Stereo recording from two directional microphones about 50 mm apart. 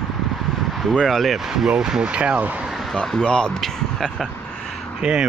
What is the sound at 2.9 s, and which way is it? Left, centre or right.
Speech, centre.